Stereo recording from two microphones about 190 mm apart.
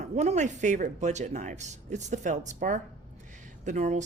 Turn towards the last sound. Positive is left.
turn(degrees=-40)  # may be behind; listen again after turning